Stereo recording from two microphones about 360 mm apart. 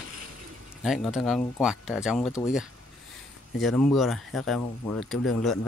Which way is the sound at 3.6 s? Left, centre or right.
Centre.